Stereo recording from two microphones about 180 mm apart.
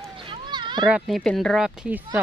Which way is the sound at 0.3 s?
25° right (ahead or behind).